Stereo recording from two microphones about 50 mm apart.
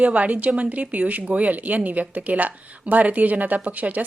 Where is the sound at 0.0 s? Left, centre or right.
Right.